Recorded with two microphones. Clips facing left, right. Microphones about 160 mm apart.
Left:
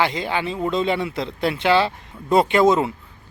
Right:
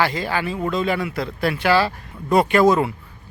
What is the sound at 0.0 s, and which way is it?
Speech, 20° left (ahead or behind).